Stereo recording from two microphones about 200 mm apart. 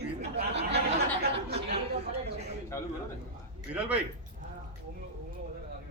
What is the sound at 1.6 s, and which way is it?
Speech, 55° right (ahead or behind).